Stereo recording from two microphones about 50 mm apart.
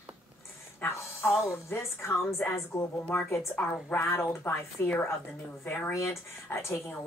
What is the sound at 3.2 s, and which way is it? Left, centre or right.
Speech, left.